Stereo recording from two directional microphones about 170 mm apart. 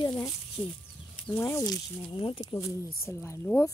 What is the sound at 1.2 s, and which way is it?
Speech, 15° left (ahead or behind).